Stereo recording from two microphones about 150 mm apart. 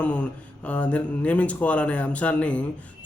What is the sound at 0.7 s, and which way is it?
A man's voice, 10° left (ahead or behind).